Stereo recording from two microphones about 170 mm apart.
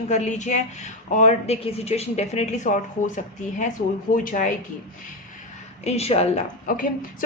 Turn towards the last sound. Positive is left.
turn(degrees=55)  # may be behind; listen again after turning